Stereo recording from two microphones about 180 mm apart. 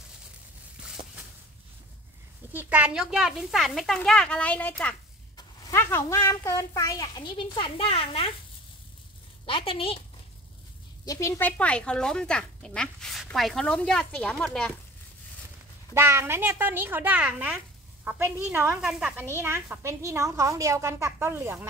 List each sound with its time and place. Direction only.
2.5 s a child's voice: 10° right (ahead or behind); by 8.3 s 30° left (ahead or behind)
9.5 s a woman's voice: 30° left (ahead or behind)
11.1 s speech: 15° left (ahead or behind)
15.9 s speech: 15° right (ahead or behind)